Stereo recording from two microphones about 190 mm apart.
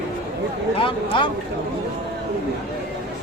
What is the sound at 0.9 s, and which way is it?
Speech, 25° left (ahead or behind).